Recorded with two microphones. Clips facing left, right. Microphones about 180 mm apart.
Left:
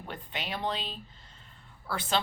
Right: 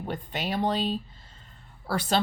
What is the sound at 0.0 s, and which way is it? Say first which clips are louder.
Speech: right 7 dB; 45° right (ahead or behind).